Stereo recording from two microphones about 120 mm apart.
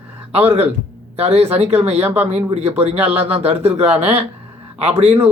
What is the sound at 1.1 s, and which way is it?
Speech, 60° right (ahead or behind).